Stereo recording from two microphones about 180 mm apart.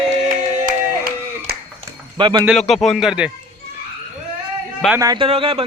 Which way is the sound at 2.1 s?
25° right (ahead or behind).